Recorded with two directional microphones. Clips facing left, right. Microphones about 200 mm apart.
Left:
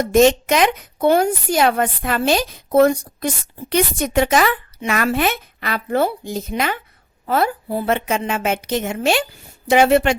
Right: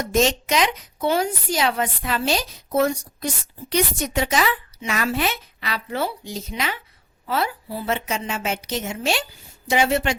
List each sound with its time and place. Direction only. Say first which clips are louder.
0.0 s a woman's voice: left 7 dB; 55° left (ahead or behind)